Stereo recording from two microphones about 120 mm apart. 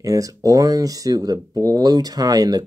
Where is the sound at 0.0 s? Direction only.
30° right (ahead or behind).